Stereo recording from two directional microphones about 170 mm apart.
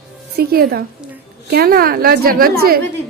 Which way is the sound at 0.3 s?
65° right (ahead or behind).